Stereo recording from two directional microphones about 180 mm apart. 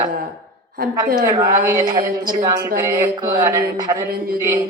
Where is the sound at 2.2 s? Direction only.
50° right (ahead or behind).